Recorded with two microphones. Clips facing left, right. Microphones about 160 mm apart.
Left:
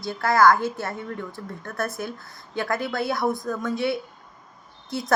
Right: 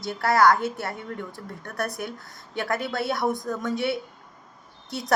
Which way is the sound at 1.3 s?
15° right (ahead or behind).